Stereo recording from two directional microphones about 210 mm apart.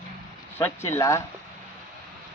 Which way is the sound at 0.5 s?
10° left (ahead or behind).